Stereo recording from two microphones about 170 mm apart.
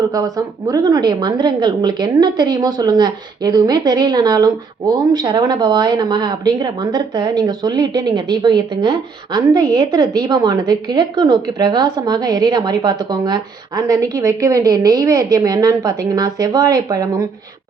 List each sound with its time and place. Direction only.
0.1 s speech: 20° right (ahead or behind)